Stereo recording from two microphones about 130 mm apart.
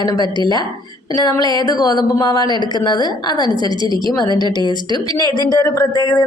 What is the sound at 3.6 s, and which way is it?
Speech, 35° right (ahead or behind).